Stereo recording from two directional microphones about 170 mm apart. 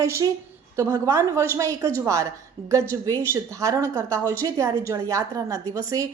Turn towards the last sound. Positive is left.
turn(degrees=-20)  # may be behind; listen again after turning